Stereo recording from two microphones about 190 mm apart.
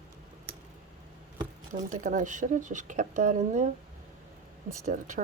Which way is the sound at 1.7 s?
40° right (ahead or behind).